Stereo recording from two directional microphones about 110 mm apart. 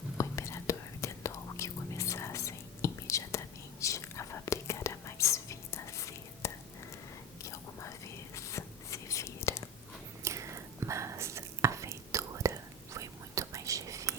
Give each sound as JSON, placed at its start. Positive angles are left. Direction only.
{"t": 0.2, "sound": "whispering", "side_deg": 25}
{"t": 10.2, "sound": "whispering", "side_deg": -25}